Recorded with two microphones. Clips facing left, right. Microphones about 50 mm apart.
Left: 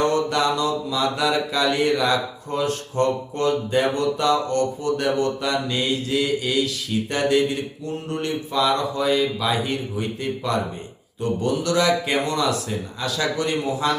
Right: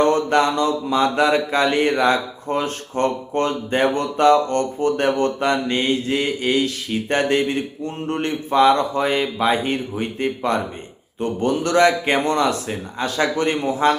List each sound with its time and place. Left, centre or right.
0.0 s mantra: right